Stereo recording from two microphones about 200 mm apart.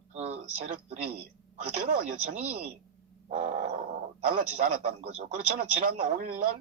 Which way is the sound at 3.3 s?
40° right (ahead or behind).